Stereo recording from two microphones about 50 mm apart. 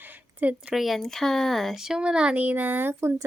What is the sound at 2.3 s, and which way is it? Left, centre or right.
Speech, right.